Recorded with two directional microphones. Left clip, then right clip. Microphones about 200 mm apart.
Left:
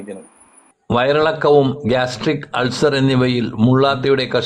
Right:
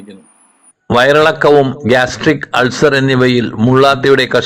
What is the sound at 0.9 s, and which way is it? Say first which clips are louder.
A man's voice: right 7 dB; 15° right (ahead or behind).